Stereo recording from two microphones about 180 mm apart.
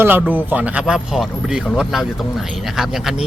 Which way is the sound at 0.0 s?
10° right (ahead or behind).